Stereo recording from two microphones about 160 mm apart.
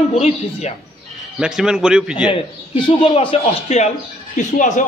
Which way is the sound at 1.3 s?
5° right (ahead or behind).